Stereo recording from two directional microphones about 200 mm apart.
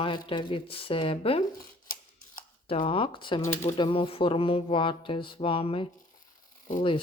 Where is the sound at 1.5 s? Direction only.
45° left (ahead or behind).